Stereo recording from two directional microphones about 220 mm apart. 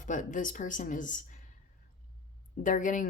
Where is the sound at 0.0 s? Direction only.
35° left (ahead or behind).